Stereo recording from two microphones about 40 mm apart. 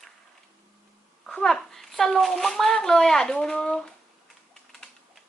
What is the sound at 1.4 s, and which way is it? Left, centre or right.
A woman's voice, centre.